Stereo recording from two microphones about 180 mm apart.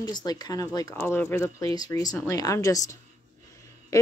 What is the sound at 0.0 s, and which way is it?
Speech, 20° left (ahead or behind).